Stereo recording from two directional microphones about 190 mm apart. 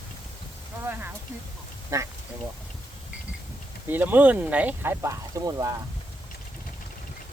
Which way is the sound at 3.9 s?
10° right (ahead or behind).